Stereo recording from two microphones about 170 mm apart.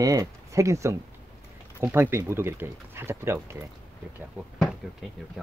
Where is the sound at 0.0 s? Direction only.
20° right (ahead or behind).